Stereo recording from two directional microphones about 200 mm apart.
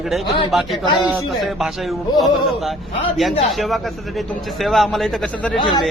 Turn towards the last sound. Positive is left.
turn(degrees=25)  # may be behind; listen again after turning